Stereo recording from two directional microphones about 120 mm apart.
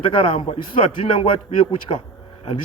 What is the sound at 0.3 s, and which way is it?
Speech, 55° left (ahead or behind).